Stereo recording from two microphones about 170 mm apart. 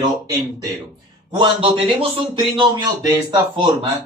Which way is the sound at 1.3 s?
30° right (ahead or behind).